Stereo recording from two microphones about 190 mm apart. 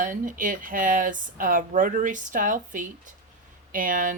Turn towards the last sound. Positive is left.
turn(degrees=-45)  # may be behind; listen again after turning